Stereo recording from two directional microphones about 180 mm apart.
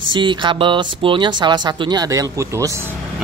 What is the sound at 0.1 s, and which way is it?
Speech, 25° right (ahead or behind).